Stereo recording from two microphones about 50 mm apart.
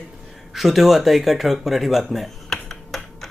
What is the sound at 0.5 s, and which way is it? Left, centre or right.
Speech, centre.